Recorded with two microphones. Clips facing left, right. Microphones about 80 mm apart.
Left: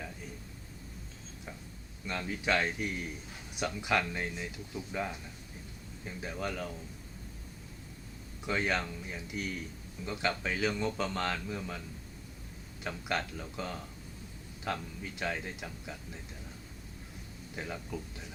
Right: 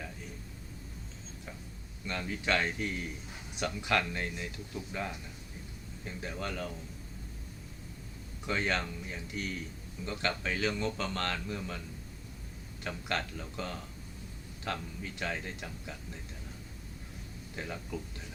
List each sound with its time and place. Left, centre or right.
2.0 s speech: centre
8.4 s a man's voice: centre
12.8 s speech: centre
17.5 s speech: centre